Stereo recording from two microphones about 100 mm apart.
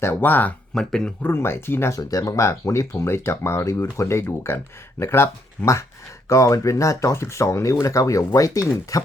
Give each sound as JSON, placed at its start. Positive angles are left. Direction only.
{"t": 0.0, "sound": "speech", "side_deg": 20}
{"t": 0.7, "sound": "speech", "side_deg": 5}
{"t": 1.3, "sound": "speech", "side_deg": 25}
{"t": 2.0, "sound": "speech", "side_deg": 35}